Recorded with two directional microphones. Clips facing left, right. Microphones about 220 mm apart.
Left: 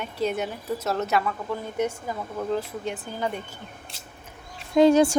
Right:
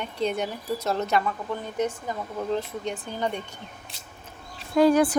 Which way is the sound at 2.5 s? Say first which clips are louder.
Even; 5° left (ahead or behind).